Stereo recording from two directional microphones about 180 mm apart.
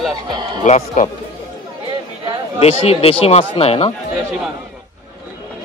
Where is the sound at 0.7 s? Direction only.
40° left (ahead or behind).